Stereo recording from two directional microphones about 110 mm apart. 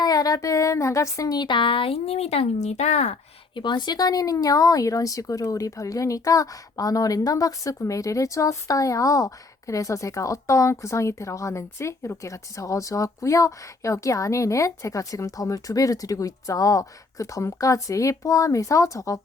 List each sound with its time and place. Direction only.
0.0 s speech: 35° left (ahead or behind); by 3.2 s 90° left
3.5 s speech: 45° left (ahead or behind); by 19.2 s 30° left (ahead or behind)